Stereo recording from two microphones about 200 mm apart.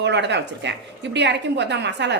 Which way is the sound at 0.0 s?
60° right (ahead or behind).